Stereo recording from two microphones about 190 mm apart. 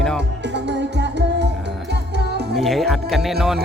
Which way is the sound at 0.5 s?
65° right (ahead or behind).